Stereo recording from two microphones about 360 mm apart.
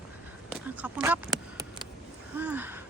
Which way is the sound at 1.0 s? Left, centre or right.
Centre.